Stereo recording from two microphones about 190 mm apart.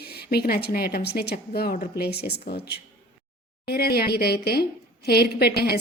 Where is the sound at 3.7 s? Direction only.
55° left (ahead or behind).